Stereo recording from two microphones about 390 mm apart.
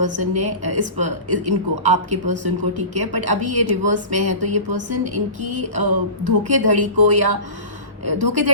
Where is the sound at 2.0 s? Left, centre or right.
Centre.